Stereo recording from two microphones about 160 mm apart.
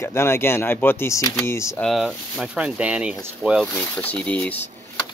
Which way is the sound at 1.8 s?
Centre (ahead or behind).